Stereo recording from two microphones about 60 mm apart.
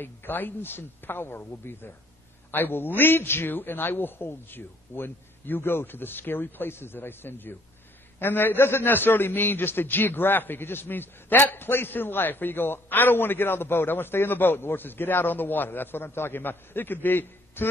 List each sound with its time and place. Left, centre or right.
0.0 s a man's voice: left